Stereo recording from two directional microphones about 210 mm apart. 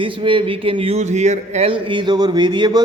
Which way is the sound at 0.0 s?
25° right (ahead or behind).